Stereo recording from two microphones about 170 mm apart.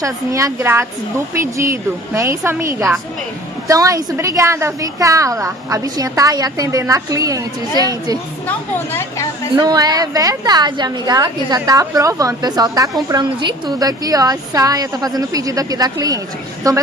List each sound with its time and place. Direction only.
0.0 s a woman's voice: 20° right (ahead or behind)
8.5 s speech: 10° left (ahead or behind)
9.6 s a woman's voice: 20° right (ahead or behind)